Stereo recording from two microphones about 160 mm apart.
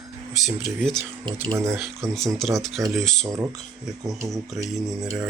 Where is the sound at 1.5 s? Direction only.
20° right (ahead or behind).